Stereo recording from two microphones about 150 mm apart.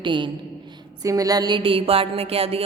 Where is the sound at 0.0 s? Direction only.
30° right (ahead or behind).